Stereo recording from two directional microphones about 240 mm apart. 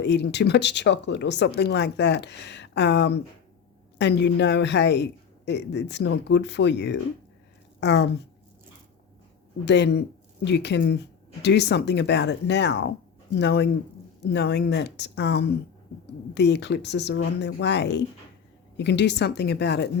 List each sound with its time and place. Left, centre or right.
0.0 s speech: left
9.6 s speech: left